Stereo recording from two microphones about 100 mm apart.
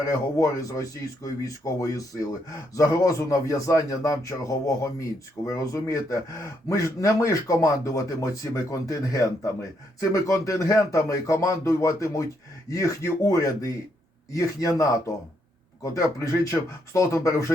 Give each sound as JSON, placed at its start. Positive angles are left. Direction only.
{"t": 0.0, "sound": "speech", "side_deg": 35}